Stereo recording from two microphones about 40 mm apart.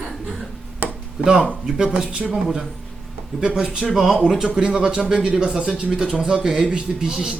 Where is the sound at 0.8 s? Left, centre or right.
Right.